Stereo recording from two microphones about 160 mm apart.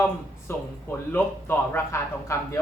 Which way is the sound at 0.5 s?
15° left (ahead or behind).